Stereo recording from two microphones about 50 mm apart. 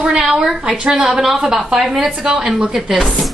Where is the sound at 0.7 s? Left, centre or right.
Right.